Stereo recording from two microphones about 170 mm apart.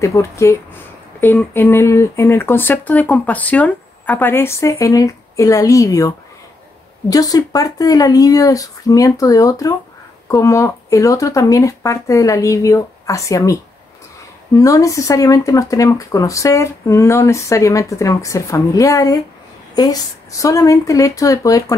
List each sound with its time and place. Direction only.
0.0 s speech: 15° left (ahead or behind)